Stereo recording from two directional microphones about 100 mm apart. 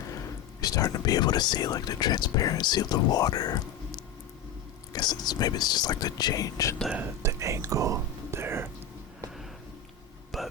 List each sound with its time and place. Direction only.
0.6 s speech: 40° left (ahead or behind)
7.2 s whispering: 30° right (ahead or behind)
10.3 s hiccup: centre (ahead or behind)